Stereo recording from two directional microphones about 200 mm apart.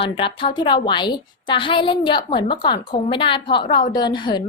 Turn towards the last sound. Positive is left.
turn(degrees=20)  # may be behind; listen again after turning